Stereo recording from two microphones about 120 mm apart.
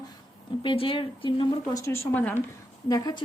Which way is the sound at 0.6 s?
45° left (ahead or behind).